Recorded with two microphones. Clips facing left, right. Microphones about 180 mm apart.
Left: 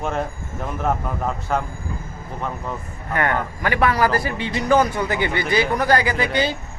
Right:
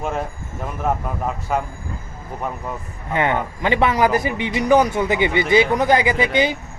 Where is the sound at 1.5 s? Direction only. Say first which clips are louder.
Right 1 dB; 5° right (ahead or behind).